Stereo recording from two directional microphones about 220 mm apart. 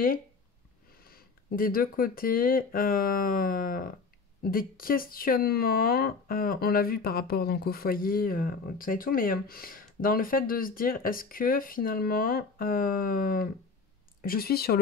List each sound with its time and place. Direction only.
0.9 s speech: 40° left (ahead or behind)